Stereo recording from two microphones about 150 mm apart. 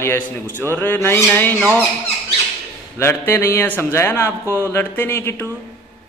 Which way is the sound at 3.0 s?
15° left (ahead or behind).